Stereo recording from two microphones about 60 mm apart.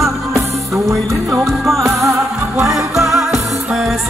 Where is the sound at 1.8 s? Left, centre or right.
Right.